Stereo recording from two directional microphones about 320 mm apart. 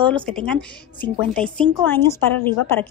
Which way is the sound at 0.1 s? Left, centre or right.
Centre.